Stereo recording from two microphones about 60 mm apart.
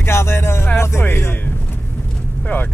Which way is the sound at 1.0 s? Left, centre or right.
Left.